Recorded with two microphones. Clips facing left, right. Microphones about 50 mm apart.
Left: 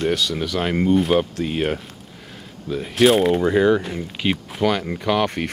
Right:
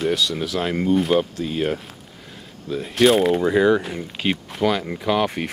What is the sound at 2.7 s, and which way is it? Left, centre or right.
Speech, centre.